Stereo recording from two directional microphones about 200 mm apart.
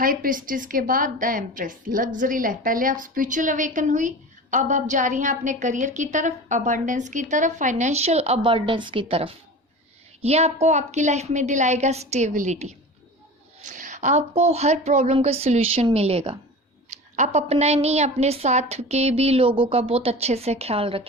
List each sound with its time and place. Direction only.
0.0 s a woman's voice: 45° right (ahead or behind); by 21.1 s 30° right (ahead or behind)